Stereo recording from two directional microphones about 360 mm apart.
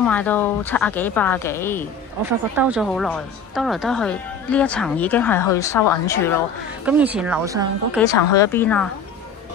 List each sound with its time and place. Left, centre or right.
0.0 s speech: centre
8.1 s speech: centre